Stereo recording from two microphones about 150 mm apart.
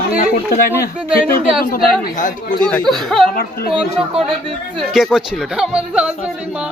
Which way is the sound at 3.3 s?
75° left (ahead or behind).